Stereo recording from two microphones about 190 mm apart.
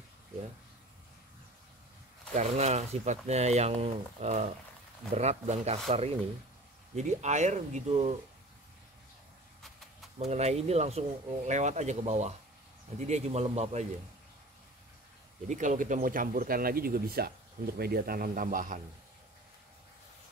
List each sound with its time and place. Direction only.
2.3 s speech: 35° right (ahead or behind)
10.1 s speech: 35° right (ahead or behind)
15.4 s speech: 40° right (ahead or behind)